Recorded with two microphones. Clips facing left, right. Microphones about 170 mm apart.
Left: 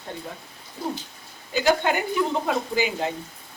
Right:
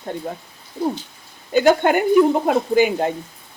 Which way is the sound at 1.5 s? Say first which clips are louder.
Right 7 dB; 50° right (ahead or behind).